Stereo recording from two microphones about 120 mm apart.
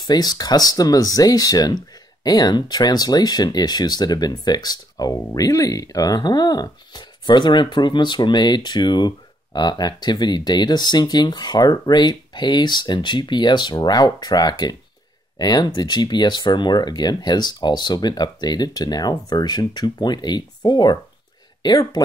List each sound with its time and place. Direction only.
0.0 s speech: 35° left (ahead or behind)